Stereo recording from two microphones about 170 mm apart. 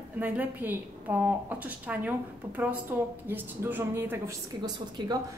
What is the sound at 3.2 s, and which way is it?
A woman's voice, 10° right (ahead or behind).